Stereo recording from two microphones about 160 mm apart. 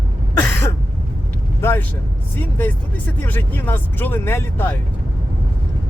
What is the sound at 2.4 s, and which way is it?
Speech, 10° left (ahead or behind).